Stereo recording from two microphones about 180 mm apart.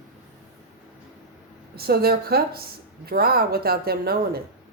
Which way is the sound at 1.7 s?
60° right (ahead or behind).